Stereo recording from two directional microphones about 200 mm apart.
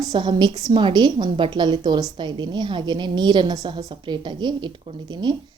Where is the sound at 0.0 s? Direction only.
20° right (ahead or behind).